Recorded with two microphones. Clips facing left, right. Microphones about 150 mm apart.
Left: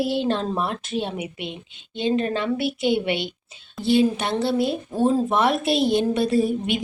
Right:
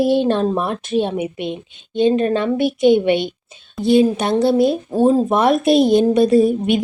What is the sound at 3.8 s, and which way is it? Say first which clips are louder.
Speech: right 5 dB; 15° right (ahead or behind).